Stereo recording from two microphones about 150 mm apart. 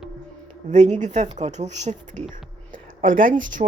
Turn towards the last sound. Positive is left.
turn(degrees=-60)  # may be behind; listen again after turning